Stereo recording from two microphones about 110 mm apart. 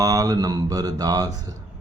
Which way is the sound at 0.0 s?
35° right (ahead or behind).